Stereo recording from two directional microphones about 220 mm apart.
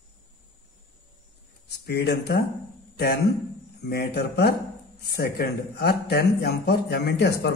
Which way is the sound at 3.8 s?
45° left (ahead or behind).